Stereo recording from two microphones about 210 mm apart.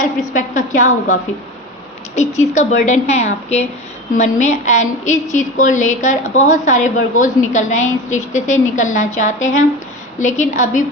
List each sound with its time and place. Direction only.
0.0 s a woman's voice: 40° left (ahead or behind)